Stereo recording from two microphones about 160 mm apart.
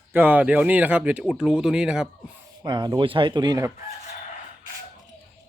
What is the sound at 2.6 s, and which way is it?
Speech, 25° right (ahead or behind).